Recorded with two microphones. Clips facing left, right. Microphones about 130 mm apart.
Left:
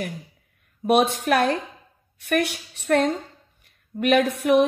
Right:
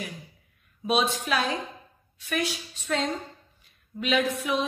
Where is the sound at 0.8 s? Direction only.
55° left (ahead or behind).